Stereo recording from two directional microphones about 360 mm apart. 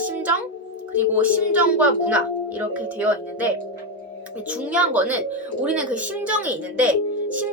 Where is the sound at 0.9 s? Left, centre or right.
Centre.